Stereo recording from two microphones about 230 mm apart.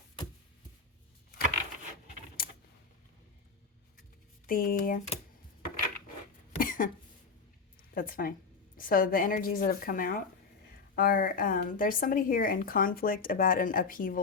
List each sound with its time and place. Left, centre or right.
4.4 s a woman's voice: left
6.6 s cough: left
7.9 s a woman's voice: left